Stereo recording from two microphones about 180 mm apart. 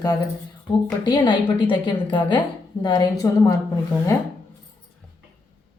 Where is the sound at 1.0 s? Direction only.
25° left (ahead or behind).